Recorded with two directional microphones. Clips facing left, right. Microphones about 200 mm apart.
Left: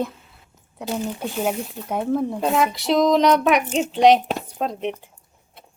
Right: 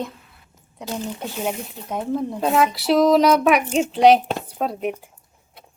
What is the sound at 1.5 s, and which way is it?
Speech, 5° left (ahead or behind).